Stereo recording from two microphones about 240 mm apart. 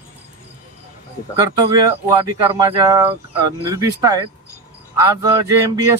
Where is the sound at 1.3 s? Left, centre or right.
Centre.